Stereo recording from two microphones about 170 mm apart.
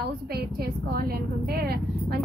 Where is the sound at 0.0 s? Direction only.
65° right (ahead or behind).